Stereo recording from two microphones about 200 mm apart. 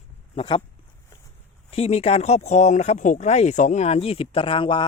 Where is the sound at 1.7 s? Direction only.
30° left (ahead or behind).